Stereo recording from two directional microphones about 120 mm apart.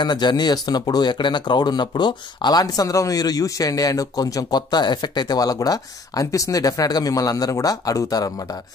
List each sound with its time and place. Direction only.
0.0 s speech: 35° left (ahead or behind)